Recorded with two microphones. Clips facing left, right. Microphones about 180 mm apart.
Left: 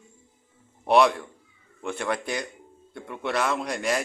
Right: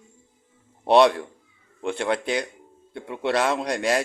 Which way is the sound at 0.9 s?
30° right (ahead or behind).